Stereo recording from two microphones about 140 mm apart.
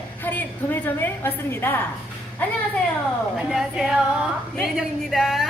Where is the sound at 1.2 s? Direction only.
15° left (ahead or behind).